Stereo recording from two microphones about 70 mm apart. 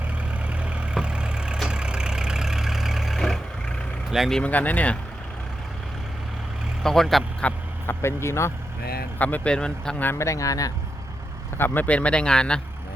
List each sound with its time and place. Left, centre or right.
0.5 s vehicle: centre
4.4 s speech: left
6.8 s speech: centre
7.9 s speech: left
9.1 s speech: left
10.2 s speech: left
11.5 s speech: left; by 12.6 s centre